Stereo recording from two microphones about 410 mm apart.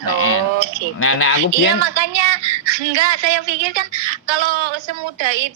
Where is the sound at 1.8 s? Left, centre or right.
Right.